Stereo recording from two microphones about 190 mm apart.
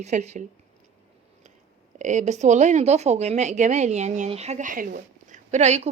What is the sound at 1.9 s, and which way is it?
Speech, 40° right (ahead or behind).